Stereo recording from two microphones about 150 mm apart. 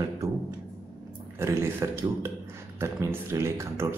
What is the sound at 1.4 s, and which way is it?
Speech, 15° right (ahead or behind).